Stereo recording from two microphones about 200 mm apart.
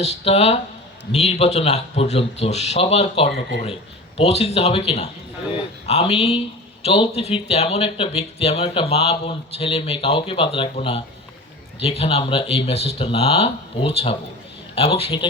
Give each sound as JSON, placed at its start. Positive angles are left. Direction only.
{"t": 0.0, "sound": "speech", "side_deg": 30}